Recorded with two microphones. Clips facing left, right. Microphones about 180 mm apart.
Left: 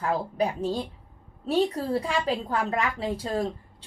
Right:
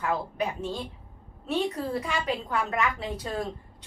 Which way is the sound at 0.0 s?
35° left (ahead or behind).